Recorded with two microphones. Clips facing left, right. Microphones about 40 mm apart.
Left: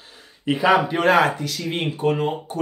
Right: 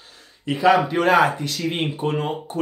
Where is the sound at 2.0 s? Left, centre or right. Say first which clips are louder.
Left 5 dB; centre.